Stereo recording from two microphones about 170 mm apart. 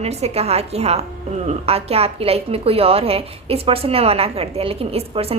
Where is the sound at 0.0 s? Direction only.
40° right (ahead or behind).